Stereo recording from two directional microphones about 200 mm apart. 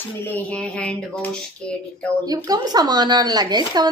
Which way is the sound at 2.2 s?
20° right (ahead or behind).